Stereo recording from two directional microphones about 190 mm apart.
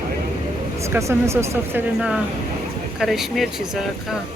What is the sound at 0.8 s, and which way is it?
Speech, 15° right (ahead or behind).